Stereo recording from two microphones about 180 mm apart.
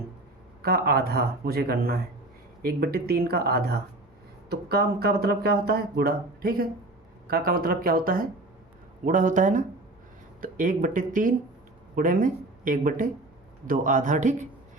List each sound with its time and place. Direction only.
0.6 s speech: 60° right (ahead or behind)